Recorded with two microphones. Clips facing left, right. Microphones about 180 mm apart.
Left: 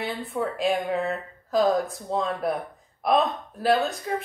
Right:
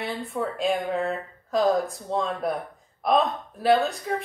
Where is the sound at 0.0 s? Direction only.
Centre (ahead or behind).